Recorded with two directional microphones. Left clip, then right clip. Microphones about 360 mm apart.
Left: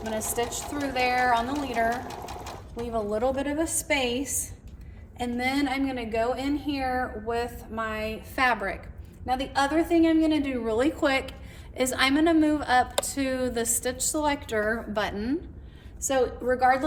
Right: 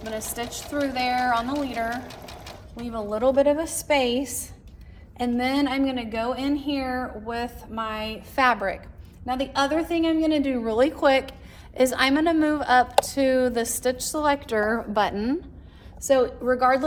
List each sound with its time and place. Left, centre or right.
0.2 s a woman's voice: centre
2.8 s a woman's voice: centre